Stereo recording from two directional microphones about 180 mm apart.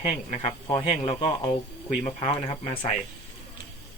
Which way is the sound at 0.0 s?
30° left (ahead or behind).